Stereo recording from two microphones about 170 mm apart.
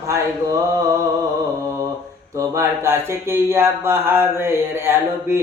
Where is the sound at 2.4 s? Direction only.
15° right (ahead or behind).